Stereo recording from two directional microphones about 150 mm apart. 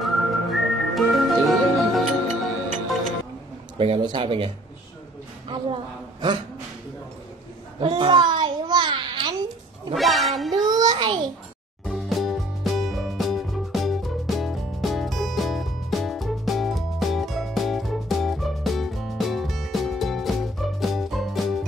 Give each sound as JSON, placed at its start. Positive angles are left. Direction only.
{"t": 0.0, "sound": "music", "side_deg": 0}
{"t": 3.7, "sound": "a man's voice", "side_deg": -35}
{"t": 7.8, "sound": "a sound", "side_deg": -30}
{"t": 9.9, "sound": "a woman's voice", "side_deg": 0}
{"t": 10.8, "sound": "a child's voice", "side_deg": -30}
{"t": 11.8, "sound": "music", "side_deg": 0}